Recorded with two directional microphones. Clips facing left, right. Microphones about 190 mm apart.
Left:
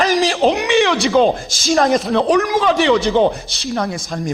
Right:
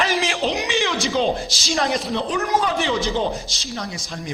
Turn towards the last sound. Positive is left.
turn(degrees=50)  # may be behind; listen again after turning